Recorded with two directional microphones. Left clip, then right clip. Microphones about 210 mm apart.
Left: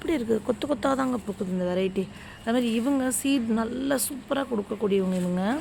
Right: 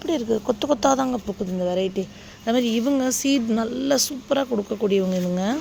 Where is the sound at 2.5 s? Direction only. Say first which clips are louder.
Right 4 dB; 15° right (ahead or behind).